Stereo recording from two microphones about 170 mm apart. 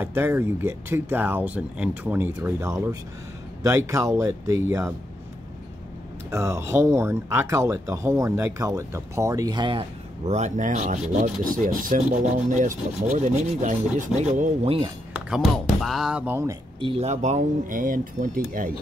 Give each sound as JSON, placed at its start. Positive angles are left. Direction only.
{"t": 0.0, "sound": "speech", "side_deg": -15}
{"t": 6.3, "sound": "speech", "side_deg": -15}
{"t": 15.2, "sound": "speech", "side_deg": -5}
{"t": 16.8, "sound": "speech", "side_deg": -40}